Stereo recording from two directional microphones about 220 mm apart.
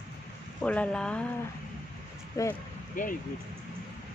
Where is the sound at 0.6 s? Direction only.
5° left (ahead or behind).